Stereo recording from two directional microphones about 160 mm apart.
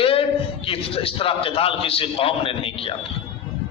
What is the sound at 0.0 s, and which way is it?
A man's voice, 35° left (ahead or behind).